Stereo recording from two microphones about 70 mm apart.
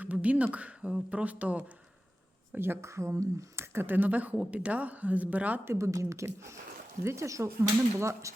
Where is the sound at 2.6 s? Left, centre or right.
Right.